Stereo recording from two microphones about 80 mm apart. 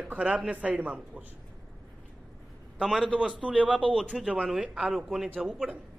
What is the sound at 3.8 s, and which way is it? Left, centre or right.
Speech, left.